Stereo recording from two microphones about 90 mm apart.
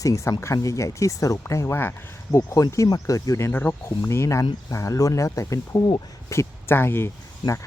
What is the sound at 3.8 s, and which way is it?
Speech, 30° left (ahead or behind).